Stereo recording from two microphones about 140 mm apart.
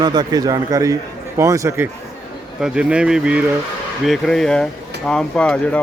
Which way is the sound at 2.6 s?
5° right (ahead or behind).